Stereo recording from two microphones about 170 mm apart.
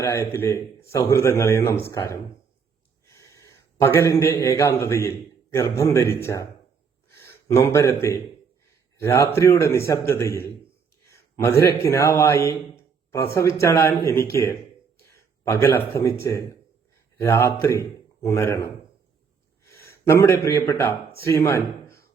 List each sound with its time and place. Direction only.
0.0 s a man's voice: 15° left (ahead or behind)
11.0 s a sound: 15° left (ahead or behind)
11.8 s a man's voice: 15° left (ahead or behind)